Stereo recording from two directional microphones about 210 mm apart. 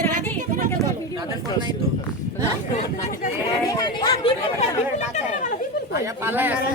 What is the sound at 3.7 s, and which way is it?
Speech, 20° left (ahead or behind).